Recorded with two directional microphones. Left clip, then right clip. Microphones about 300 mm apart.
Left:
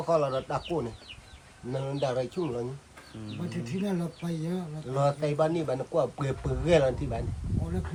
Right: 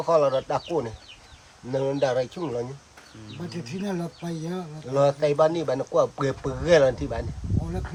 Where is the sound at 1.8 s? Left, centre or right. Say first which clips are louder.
Right 6 dB; right.